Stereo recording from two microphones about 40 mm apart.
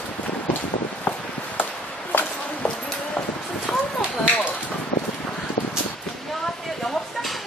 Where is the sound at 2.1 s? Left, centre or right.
Left.